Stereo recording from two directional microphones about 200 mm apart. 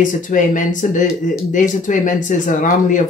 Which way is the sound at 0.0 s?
40° left (ahead or behind).